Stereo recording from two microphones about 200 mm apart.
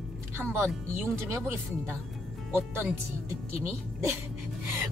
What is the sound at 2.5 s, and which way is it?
Speech, 10° right (ahead or behind).